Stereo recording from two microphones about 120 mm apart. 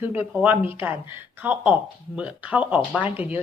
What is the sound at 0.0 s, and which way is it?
A woman's voice, 15° right (ahead or behind).